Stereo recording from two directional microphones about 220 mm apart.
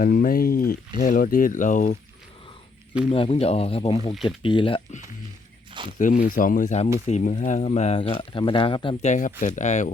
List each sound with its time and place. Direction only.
0.0 s speech: 40° left (ahead or behind)
3.1 s speech: 25° left (ahead or behind)
6.0 s speech: 35° left (ahead or behind)